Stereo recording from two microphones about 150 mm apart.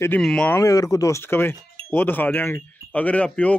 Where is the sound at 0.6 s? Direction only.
25° left (ahead or behind).